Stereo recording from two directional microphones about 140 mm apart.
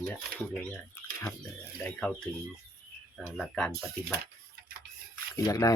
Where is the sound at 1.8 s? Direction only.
5° left (ahead or behind).